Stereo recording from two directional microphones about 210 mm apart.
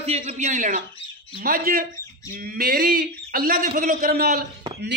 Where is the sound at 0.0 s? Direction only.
30° right (ahead or behind).